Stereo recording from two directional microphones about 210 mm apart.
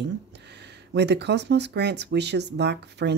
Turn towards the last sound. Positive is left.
turn(degrees=-55)  # may be behind; listen again after turning